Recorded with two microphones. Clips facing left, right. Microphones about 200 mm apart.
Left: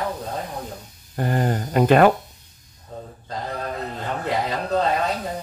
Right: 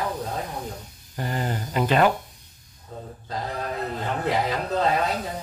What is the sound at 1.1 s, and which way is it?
Speech, 50° left (ahead or behind).